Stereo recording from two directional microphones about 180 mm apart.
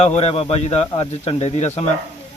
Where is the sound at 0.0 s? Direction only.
35° left (ahead or behind).